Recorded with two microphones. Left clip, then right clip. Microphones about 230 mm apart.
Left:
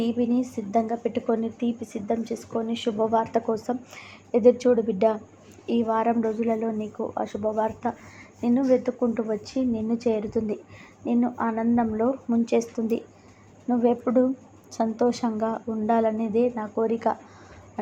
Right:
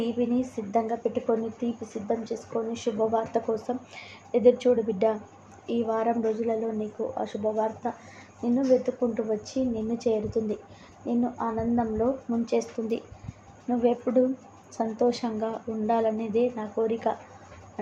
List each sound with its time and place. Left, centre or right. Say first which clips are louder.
0.0 s a woman's voice: left 2 dB; left